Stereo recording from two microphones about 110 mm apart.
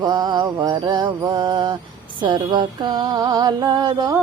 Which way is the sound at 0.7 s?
45° right (ahead or behind).